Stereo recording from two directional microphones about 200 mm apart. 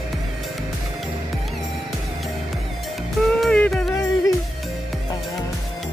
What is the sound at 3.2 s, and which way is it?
Music, 5° left (ahead or behind).